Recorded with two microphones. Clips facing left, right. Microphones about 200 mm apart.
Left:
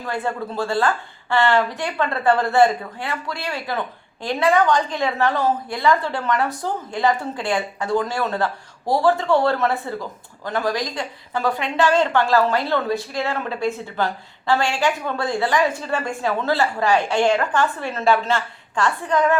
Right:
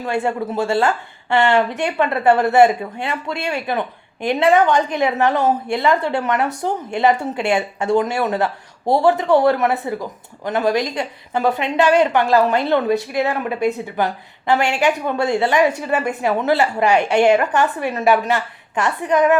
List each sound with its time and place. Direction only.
0.0 s speech: 25° right (ahead or behind)